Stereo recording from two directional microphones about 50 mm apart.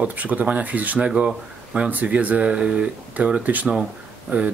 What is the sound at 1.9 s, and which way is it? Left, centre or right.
Speech, right.